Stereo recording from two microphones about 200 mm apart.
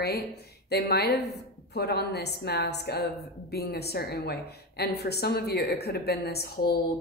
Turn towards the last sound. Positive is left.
turn(degrees=50)  # may be behind; listen again after turning